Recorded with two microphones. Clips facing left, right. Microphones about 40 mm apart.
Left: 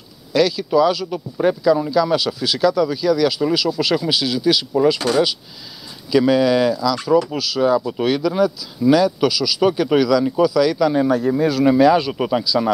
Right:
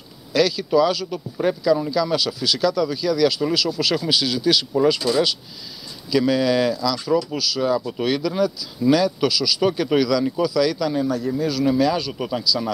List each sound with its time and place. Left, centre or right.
0.3 s speech: centre
6.1 s speech: centre
11.0 s speech: left